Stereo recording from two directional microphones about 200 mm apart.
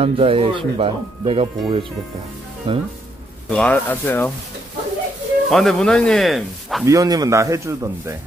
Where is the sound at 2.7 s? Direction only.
25° right (ahead or behind).